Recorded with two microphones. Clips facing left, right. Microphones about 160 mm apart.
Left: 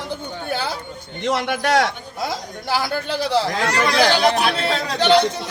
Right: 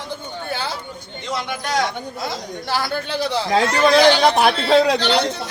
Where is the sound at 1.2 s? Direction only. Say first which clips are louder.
Left 6 dB; 65° left (ahead or behind).